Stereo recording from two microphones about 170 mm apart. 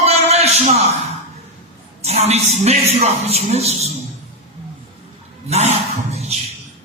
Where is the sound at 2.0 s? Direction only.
40° right (ahead or behind).